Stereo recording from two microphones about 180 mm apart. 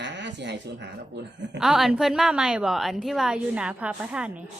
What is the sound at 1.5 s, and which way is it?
Speech, centre (ahead or behind).